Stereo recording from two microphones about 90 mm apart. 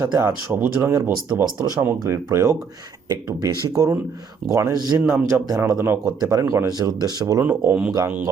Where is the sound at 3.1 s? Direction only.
45° right (ahead or behind).